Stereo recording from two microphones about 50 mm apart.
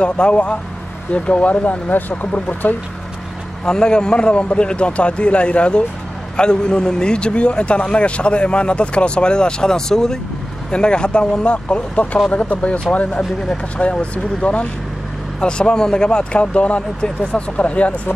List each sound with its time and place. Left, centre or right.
0.0 s a man's voice: left
3.6 s a man's voice: centre